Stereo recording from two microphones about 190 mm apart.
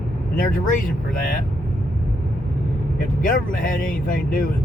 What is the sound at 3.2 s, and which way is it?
Speech, 45° left (ahead or behind).